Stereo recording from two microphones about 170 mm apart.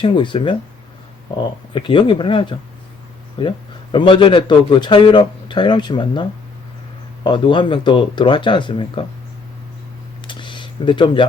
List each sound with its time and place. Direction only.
0.0 s a man's voice: 30° left (ahead or behind)
7.3 s a man's voice: 30° left (ahead or behind)
10.2 s a sound: 30° left (ahead or behind)